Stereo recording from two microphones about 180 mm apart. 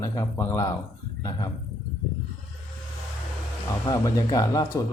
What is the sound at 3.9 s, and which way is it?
Speech, 20° left (ahead or behind).